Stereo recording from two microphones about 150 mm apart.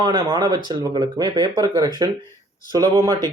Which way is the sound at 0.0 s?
30° right (ahead or behind).